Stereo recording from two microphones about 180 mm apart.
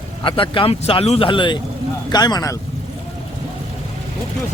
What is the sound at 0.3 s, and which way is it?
Speech, 30° left (ahead or behind).